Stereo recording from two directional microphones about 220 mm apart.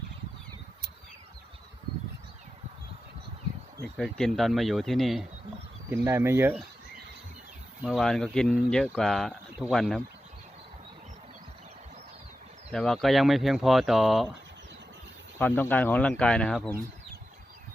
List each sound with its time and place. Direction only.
3.9 s speech: centre (ahead or behind)
5.9 s speech: 10° right (ahead or behind)
7.8 s speech: centre (ahead or behind)
12.7 s speech: centre (ahead or behind)
15.4 s speech: 10° left (ahead or behind)